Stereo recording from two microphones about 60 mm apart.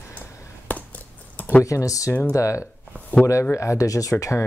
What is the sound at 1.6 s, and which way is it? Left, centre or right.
Speech, left.